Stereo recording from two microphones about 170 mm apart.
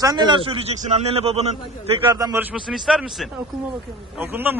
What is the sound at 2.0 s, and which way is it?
Speech, 20° right (ahead or behind).